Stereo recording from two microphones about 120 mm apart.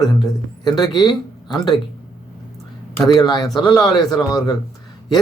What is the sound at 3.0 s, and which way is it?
Speech, 35° left (ahead or behind).